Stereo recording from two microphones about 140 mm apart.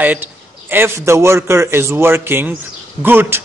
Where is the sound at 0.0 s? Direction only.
15° right (ahead or behind).